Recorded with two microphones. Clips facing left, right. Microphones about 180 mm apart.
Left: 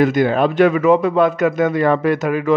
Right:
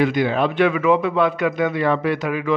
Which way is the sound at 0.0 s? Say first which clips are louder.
Left 4 dB; 45° left (ahead or behind).